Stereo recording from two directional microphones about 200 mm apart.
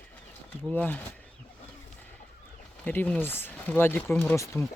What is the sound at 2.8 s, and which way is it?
Speech, 10° left (ahead or behind).